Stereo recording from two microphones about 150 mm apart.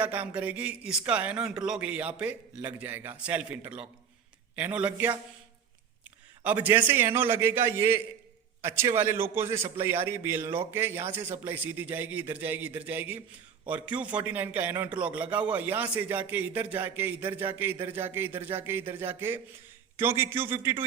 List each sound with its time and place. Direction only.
0.0 s a man's voice: 10° right (ahead or behind)
6.4 s a man's voice: 10° right (ahead or behind)